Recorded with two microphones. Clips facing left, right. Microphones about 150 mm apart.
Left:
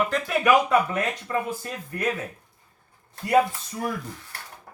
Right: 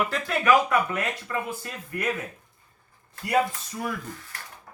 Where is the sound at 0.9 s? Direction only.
30° left (ahead or behind).